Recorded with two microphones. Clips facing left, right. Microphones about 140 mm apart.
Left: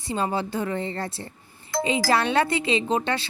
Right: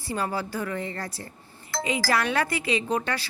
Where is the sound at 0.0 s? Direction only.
20° left (ahead or behind).